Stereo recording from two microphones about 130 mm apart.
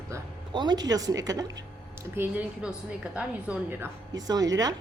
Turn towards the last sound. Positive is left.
turn(degrees=-30)  # may be behind; listen again after turning